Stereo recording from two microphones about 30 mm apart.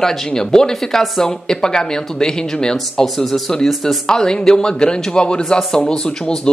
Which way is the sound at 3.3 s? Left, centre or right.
Centre.